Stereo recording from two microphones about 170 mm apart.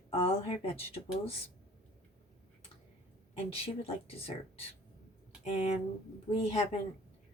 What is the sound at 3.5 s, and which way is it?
Speech, 35° left (ahead or behind).